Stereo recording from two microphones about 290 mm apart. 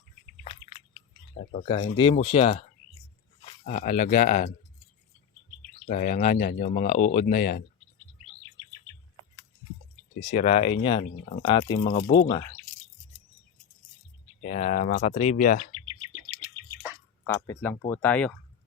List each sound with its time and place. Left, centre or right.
1.5 s speech: centre
5.9 s speech: left
10.2 s speech: left
14.4 s speech: left
17.2 s speech: centre